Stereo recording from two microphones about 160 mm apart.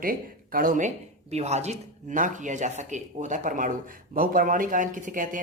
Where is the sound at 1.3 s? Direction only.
45° right (ahead or behind).